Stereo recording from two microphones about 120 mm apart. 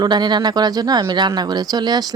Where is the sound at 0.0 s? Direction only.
35° right (ahead or behind).